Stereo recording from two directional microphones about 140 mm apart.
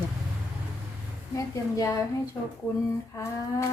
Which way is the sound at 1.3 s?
20° left (ahead or behind).